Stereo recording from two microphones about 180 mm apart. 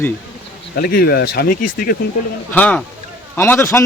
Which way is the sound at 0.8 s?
55° left (ahead or behind).